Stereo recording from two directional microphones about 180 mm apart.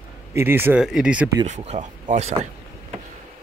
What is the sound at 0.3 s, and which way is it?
Speech, 15° right (ahead or behind).